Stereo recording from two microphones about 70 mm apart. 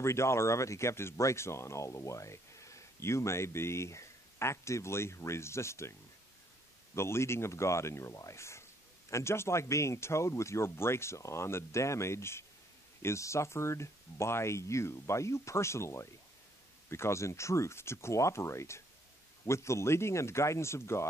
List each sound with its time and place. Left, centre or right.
0.0 s speech: left
7.0 s speech: left